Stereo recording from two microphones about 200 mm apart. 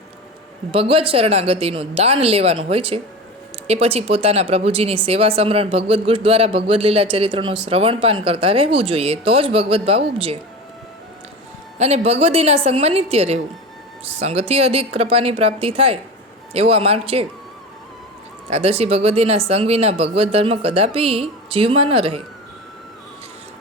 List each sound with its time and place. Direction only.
0.7 s speech: 25° right (ahead or behind)
11.8 s a woman's voice: 30° right (ahead or behind)
18.5 s speech: 30° right (ahead or behind)